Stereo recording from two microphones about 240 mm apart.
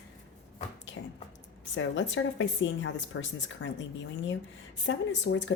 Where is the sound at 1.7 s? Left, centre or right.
Left.